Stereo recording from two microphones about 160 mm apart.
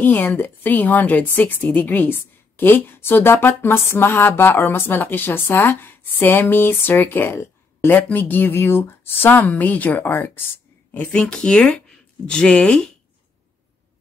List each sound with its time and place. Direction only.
0.0 s a woman's voice: 10° left (ahead or behind)